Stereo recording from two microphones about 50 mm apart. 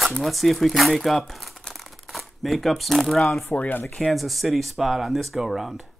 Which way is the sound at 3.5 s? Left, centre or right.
Left.